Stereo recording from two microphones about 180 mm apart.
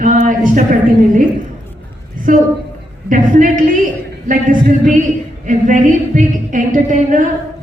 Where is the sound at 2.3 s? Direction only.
50° right (ahead or behind).